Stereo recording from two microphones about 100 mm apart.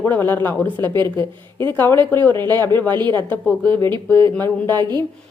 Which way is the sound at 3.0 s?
45° right (ahead or behind).